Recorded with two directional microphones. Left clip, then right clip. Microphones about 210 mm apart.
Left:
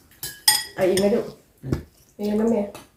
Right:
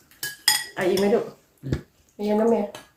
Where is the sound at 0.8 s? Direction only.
25° right (ahead or behind).